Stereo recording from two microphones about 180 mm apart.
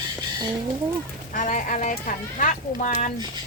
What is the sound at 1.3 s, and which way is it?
Speech, 45° left (ahead or behind).